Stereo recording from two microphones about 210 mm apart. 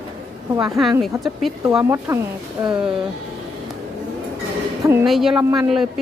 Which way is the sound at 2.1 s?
15° right (ahead or behind).